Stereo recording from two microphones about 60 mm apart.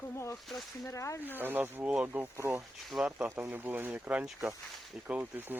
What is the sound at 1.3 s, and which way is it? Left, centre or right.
Speech, right.